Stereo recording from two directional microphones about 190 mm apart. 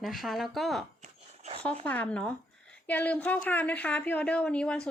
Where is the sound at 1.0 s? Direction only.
35° right (ahead or behind).